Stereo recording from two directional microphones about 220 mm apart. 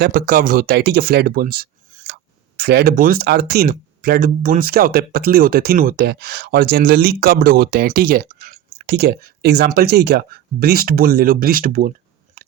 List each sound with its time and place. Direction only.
0.0 s speech: 40° right (ahead or behind)